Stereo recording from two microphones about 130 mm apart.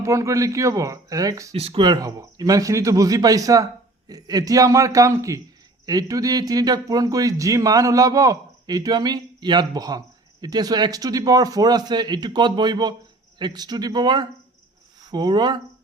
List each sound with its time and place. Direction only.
0.0 s speech: 25° right (ahead or behind)
1.5 s speech: 50° right (ahead or behind)
1.8 s a man's voice: 30° right (ahead or behind)